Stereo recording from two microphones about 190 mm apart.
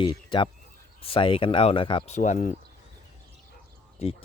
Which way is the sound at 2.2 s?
40° left (ahead or behind).